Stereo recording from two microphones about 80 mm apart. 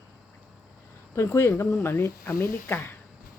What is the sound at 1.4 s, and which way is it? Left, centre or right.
Speech, left.